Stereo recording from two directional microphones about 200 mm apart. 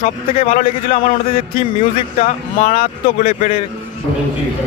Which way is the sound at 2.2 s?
40° left (ahead or behind).